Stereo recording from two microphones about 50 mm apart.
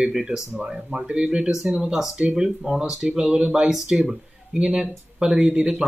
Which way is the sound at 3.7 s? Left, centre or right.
Centre.